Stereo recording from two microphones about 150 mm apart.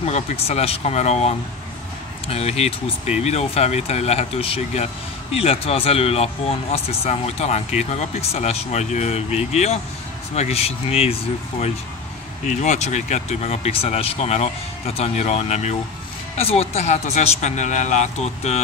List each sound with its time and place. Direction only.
0.0 s speech: 45° left (ahead or behind)
12.4 s speech: 50° left (ahead or behind)